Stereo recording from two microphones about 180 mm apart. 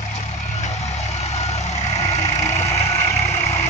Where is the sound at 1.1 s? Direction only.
40° left (ahead or behind).